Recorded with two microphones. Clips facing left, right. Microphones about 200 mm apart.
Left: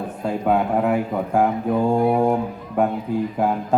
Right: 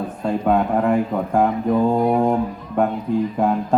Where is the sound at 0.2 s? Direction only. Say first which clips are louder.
Right 1 dB; 5° left (ahead or behind).